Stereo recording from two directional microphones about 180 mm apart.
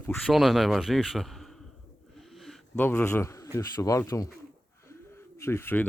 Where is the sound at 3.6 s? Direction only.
20° left (ahead or behind).